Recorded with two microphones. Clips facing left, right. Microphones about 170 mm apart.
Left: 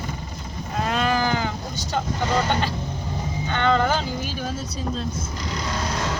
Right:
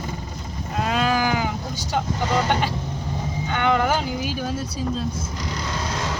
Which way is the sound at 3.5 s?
10° right (ahead or behind).